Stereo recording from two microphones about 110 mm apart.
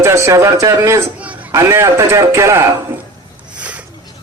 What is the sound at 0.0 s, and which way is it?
A man's voice, 25° right (ahead or behind).